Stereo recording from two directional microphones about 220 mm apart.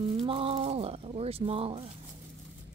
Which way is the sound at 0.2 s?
25° right (ahead or behind).